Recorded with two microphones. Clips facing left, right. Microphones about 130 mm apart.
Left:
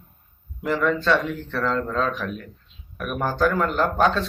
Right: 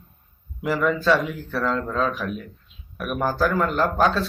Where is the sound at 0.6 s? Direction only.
5° right (ahead or behind).